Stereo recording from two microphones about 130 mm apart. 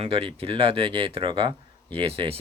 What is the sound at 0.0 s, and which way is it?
Speech, 45° right (ahead or behind).